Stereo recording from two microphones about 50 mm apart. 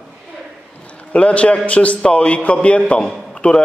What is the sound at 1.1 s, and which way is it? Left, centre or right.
A man's voice, left.